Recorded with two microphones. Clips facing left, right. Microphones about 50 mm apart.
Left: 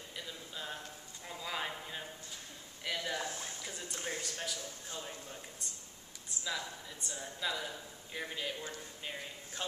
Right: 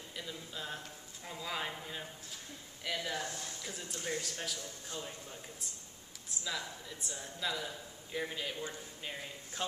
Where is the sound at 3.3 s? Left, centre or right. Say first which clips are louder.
Left 1 dB; left.